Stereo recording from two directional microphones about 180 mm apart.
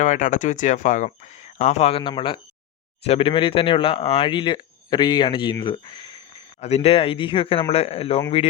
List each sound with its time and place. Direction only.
0.0 s speech: 45° left (ahead or behind); by 5.9 s 25° left (ahead or behind)
6.6 s speech: 35° left (ahead or behind)